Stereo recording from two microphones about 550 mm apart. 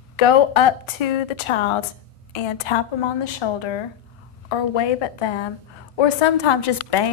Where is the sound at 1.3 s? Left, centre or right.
Left.